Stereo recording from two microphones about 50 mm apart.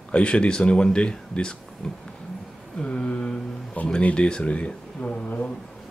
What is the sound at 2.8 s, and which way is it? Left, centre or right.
Speech, left.